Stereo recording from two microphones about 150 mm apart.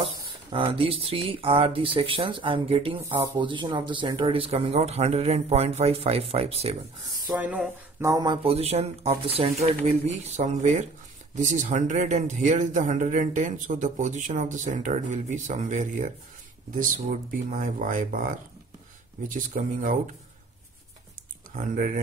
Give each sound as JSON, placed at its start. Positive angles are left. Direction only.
{"t": 0.0, "sound": "speech", "side_deg": -35}
{"t": 7.2, "sound": "speech", "side_deg": -10}
{"t": 8.0, "sound": "speech", "side_deg": -25}
{"t": 8.4, "sound": "a man's voice", "side_deg": -40}
{"t": 17.5, "sound": "a man's voice", "side_deg": -60}
{"t": 21.5, "sound": "speech", "side_deg": -65}